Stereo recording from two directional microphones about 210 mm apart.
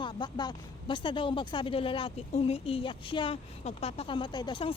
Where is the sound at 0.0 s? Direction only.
20° left (ahead or behind).